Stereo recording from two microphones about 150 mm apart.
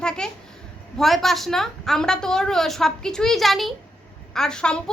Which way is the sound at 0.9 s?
Centre (ahead or behind).